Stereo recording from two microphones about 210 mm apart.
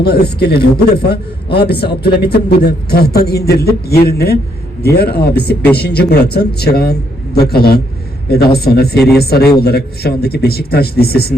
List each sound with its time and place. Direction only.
0.0 s a man's voice: 50° left (ahead or behind)